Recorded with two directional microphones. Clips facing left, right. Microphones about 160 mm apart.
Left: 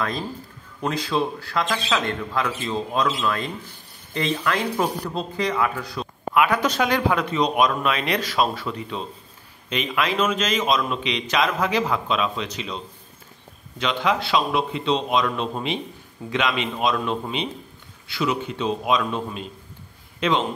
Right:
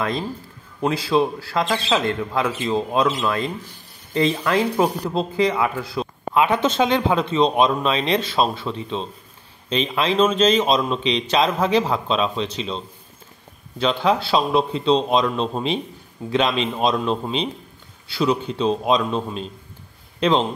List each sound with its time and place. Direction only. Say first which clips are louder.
0.8 s a man's voice: right 4 dB; 30° right (ahead or behind)